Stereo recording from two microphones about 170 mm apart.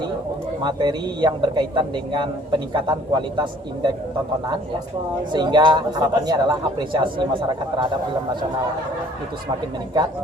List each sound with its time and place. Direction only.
0.6 s a man's voice: 25° right (ahead or behind)
5.3 s a man's voice: 25° right (ahead or behind)